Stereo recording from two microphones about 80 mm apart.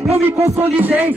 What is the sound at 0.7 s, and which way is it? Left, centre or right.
Music, right.